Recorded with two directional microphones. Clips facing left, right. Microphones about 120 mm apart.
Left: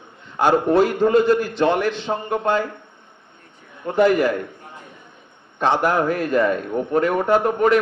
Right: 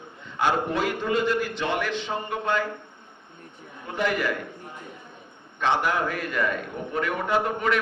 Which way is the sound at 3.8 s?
45° left (ahead or behind).